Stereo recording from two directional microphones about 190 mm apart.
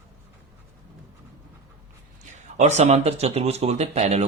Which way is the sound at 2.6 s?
35° right (ahead or behind).